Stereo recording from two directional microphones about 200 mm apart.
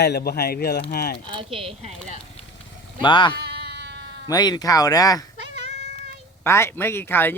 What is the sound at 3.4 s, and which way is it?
Sheep, 55° right (ahead or behind).